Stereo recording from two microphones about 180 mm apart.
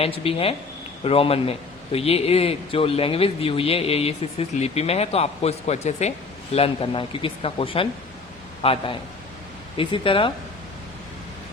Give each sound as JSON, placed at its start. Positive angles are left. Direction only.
{"t": 0.0, "sound": "a man's voice", "side_deg": 30}